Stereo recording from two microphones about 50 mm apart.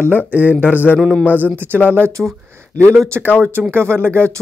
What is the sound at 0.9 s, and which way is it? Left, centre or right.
Speech, left.